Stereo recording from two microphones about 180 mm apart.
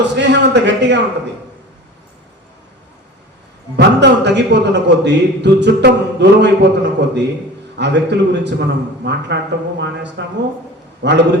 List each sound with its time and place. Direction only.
0.0 s a man's voice: 75° right (ahead or behind)
3.8 s a man's voice: 70° right (ahead or behind)